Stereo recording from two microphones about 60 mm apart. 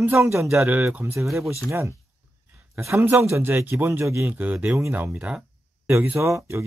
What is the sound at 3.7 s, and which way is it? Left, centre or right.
Speech, right.